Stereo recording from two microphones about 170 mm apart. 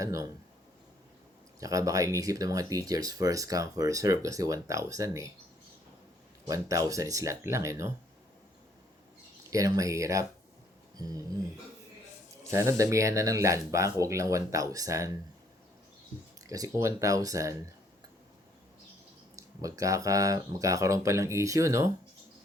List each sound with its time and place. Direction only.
0.0 s speech: 20° right (ahead or behind)
1.5 s speech: 20° right (ahead or behind)
6.5 s speech: 20° right (ahead or behind)
9.5 s speech: 20° right (ahead or behind)
12.5 s speech: 15° right (ahead or behind)
16.5 s speech: 20° right (ahead or behind)
19.4 s speech: 20° right (ahead or behind)